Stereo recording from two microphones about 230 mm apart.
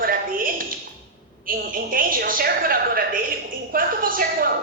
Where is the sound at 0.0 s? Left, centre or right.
Right.